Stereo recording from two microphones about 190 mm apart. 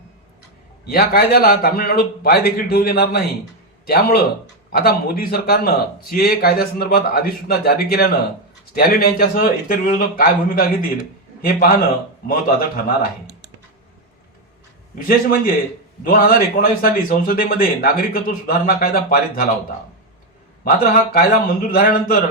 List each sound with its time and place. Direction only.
0.9 s a man's voice: 55° left (ahead or behind)
12.3 s a man's voice: 50° left (ahead or behind)
14.9 s a man's voice: 50° left (ahead or behind)
20.7 s a man's voice: 50° left (ahead or behind)